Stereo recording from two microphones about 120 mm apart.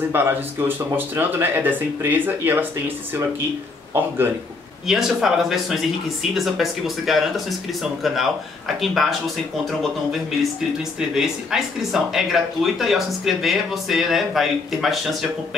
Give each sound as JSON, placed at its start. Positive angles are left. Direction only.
{"t": 0.1, "sound": "speech", "side_deg": -15}
{"t": 4.8, "sound": "speech", "side_deg": -5}
{"t": 11.0, "sound": "speech", "side_deg": -5}